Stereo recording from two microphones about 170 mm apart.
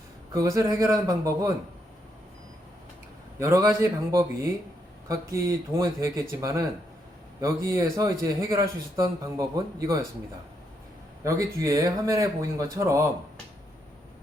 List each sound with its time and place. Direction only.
0.3 s a man's voice: 20° right (ahead or behind)
3.3 s a man's voice: 15° right (ahead or behind)
11.2 s a man's voice: 20° right (ahead or behind)